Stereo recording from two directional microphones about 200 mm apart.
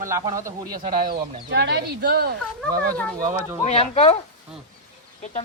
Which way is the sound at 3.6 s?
30° left (ahead or behind).